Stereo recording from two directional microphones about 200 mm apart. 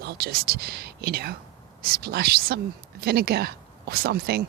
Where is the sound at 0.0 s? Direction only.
50° right (ahead or behind).